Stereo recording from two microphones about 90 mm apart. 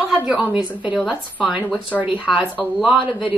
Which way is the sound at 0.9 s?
Centre (ahead or behind).